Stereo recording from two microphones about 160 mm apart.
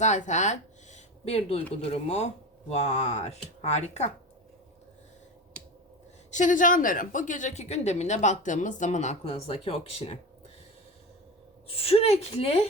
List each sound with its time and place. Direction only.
0.0 s speech: 45° left (ahead or behind)
6.3 s speech: 55° left (ahead or behind)
11.7 s a woman's voice: 35° left (ahead or behind)